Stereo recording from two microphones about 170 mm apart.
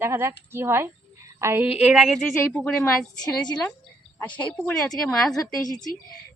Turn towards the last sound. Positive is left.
turn(degrees=20)  # may be behind; listen again after turning